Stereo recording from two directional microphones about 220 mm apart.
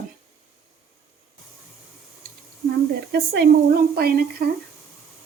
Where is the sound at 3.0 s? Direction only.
45° right (ahead or behind).